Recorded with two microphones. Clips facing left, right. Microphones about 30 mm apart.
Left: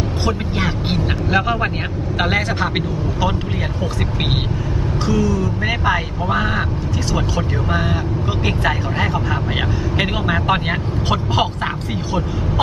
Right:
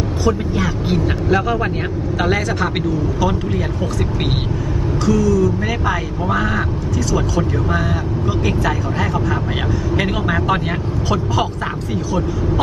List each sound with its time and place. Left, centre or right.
0.2 s speech: left
1.3 s speech: left
5.0 s speech: left
9.9 s speech: centre